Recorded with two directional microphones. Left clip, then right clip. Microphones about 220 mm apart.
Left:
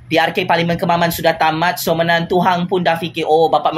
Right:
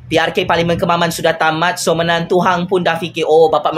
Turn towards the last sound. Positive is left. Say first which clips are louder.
# right 2 dB
turn(degrees=-15)  # may be behind; listen again after turning